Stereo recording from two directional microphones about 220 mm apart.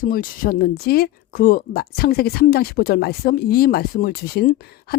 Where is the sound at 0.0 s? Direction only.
40° left (ahead or behind).